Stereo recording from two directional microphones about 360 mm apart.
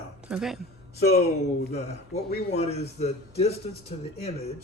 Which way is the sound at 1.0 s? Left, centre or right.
Left.